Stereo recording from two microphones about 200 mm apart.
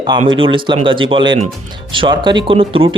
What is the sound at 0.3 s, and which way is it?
Speech, 25° right (ahead or behind).